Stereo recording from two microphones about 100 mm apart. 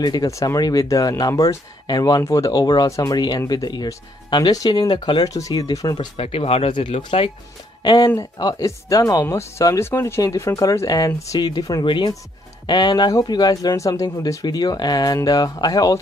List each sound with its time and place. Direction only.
0.0 s speech: 40° left (ahead or behind)
6.1 s speech: 85° left
7.8 s speech: 50° left (ahead or behind)
8.2 s speech: 35° left (ahead or behind)
11.8 s speech: 55° left (ahead or behind)